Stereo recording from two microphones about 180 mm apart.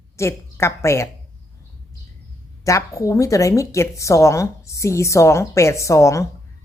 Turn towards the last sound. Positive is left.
turn(degrees=15)  # may be behind; listen again after turning